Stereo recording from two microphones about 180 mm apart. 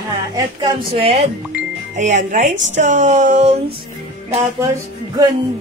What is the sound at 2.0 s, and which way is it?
Speech, 45° right (ahead or behind).